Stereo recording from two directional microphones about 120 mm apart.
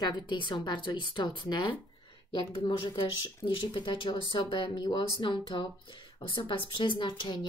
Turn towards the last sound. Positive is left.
turn(degrees=40)  # may be behind; listen again after turning